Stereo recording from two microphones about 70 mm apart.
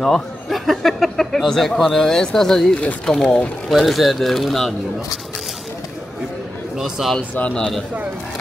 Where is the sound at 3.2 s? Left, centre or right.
Centre.